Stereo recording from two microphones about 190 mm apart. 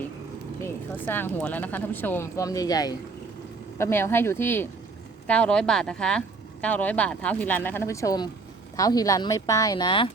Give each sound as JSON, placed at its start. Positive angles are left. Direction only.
{"t": 1.0, "sound": "a woman's voice", "side_deg": 10}